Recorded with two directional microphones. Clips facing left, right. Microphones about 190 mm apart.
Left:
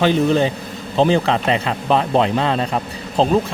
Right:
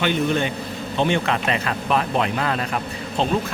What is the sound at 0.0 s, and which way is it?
A man's voice, 35° left (ahead or behind).